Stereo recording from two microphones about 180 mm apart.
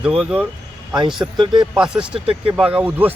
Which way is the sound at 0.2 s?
5° right (ahead or behind).